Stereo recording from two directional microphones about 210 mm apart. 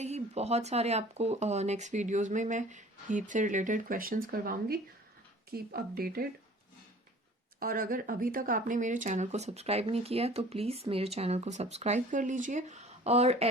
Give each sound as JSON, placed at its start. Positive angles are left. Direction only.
{"t": 0.0, "sound": "speech", "side_deg": -30}
{"t": 7.6, "sound": "speech", "side_deg": -40}